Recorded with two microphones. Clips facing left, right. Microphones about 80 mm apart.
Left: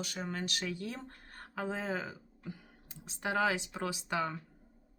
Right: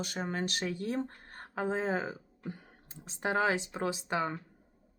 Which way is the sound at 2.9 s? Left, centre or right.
Right.